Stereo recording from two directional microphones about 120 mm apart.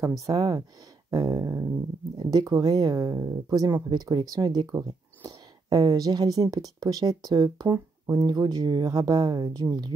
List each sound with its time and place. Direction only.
0.2 s speech: 25° right (ahead or behind)